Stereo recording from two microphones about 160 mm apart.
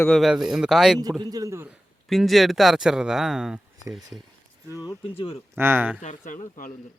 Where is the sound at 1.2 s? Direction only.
20° right (ahead or behind).